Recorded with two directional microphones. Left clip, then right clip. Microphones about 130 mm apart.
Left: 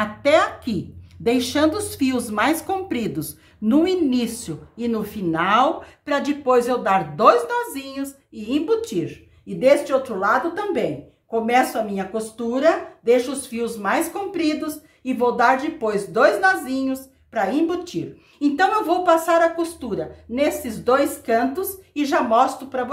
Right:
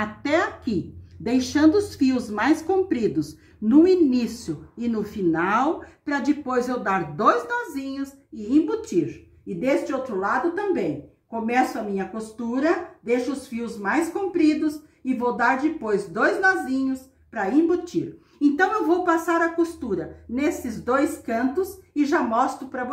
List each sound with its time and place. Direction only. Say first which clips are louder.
0.0 s a woman's voice: left 6 dB; 40° left (ahead or behind); by 22.8 s 20° left (ahead or behind)